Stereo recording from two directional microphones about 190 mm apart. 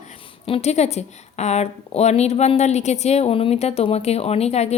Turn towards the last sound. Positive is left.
turn(degrees=35)  # may be behind; listen again after turning